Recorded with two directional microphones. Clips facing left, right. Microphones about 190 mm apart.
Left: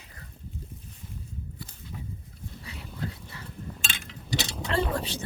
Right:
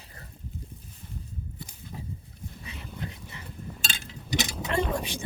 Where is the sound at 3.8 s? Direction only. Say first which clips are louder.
Even; 35° right (ahead or behind).